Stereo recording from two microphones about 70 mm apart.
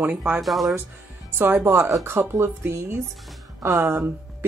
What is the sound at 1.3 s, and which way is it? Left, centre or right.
A woman's voice, right.